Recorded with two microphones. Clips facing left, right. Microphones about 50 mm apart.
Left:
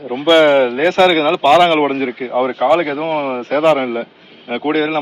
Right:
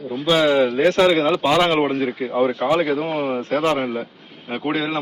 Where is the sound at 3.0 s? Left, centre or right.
Left.